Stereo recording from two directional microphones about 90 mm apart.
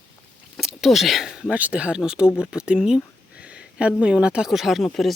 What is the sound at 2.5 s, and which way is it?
Speech, 10° right (ahead or behind).